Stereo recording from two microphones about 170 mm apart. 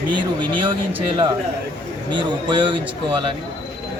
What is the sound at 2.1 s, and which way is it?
Speech, 30° right (ahead or behind).